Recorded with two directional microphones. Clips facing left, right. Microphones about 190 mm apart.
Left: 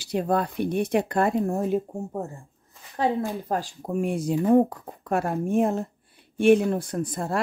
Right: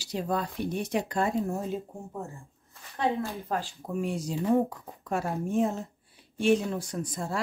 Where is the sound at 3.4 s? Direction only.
45° left (ahead or behind).